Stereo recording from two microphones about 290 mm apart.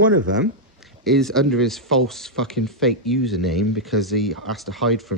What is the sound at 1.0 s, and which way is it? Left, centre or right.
Speech, centre.